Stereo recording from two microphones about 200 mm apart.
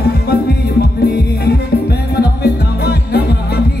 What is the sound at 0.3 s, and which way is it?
Music, 55° left (ahead or behind).